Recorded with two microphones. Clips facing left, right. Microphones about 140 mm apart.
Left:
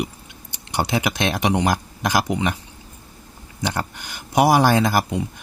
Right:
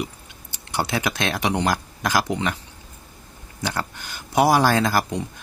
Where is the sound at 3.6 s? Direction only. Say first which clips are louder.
Left 2 dB; 20° left (ahead or behind).